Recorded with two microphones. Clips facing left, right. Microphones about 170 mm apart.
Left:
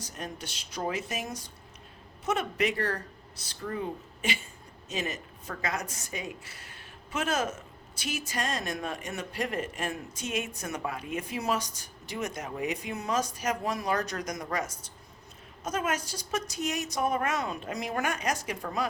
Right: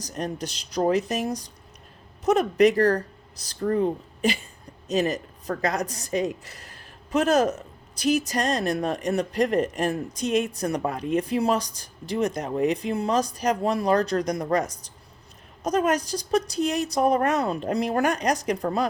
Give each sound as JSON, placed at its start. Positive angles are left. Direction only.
{"t": 0.0, "sound": "a woman's voice", "side_deg": -35}